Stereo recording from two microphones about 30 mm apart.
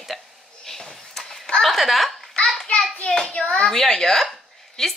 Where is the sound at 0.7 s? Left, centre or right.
Centre.